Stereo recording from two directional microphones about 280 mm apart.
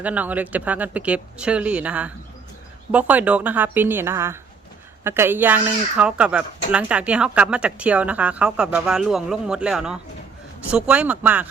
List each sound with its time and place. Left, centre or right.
0.0 s a woman's voice: centre